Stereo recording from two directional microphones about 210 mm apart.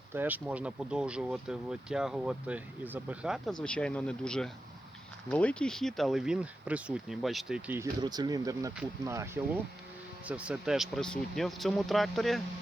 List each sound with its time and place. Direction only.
0.1 s speech: 10° right (ahead or behind)
8.0 s speech: 20° right (ahead or behind); by 12.4 s centre (ahead or behind)